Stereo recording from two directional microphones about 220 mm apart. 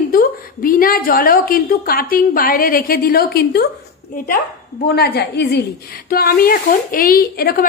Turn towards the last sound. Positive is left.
turn(degrees=40)  # may be behind; listen again after turning